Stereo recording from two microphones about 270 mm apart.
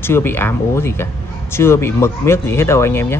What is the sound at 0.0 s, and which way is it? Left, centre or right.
A man's voice, centre.